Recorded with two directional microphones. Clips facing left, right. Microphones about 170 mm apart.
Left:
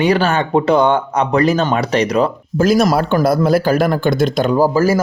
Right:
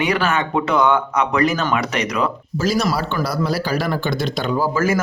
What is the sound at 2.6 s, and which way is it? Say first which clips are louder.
Speech: left 7 dB; 50° left (ahead or behind).